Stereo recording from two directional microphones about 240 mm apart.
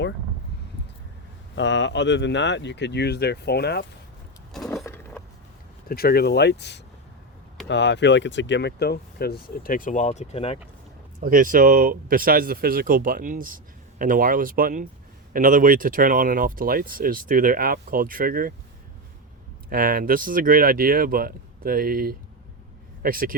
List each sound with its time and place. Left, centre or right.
1.5 s speech: left
4.5 s a sound: centre
5.9 s speech: left
11.2 s speech: right
19.7 s speech: right